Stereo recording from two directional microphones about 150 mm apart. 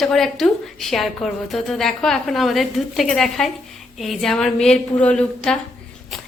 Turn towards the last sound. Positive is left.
turn(degrees=5)  # may be behind; listen again after turning